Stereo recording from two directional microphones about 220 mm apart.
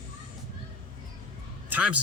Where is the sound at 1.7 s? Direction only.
5° right (ahead or behind).